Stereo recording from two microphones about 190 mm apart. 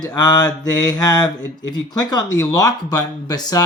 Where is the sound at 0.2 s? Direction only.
20° left (ahead or behind).